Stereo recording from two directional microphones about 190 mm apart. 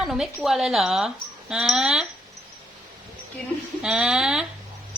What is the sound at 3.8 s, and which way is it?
Speech, 5° right (ahead or behind).